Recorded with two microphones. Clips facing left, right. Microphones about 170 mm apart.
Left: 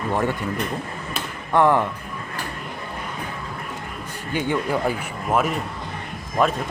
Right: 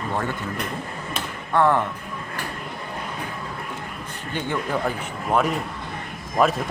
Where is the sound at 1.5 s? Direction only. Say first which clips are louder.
Left 2 dB; 15° left (ahead or behind).